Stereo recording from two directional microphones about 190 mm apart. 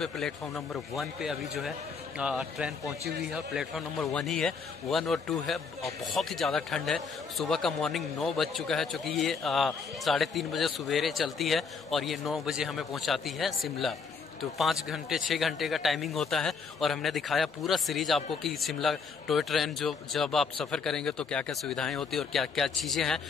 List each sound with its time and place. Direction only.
0.0 s a man's voice: centre (ahead or behind)